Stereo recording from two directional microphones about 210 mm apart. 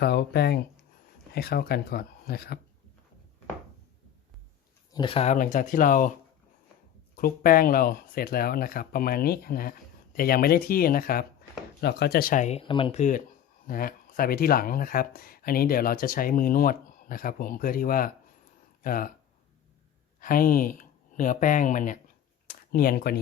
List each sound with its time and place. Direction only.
0.0 s speech: 50° left (ahead or behind)
4.9 s speech: 25° left (ahead or behind)
7.2 s speech: 45° left (ahead or behind)
20.1 s speech: 40° left (ahead or behind)